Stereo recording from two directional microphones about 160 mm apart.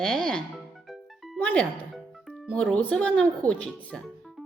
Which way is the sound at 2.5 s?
5° left (ahead or behind).